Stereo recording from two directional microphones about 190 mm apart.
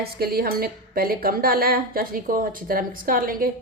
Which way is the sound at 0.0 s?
55° right (ahead or behind).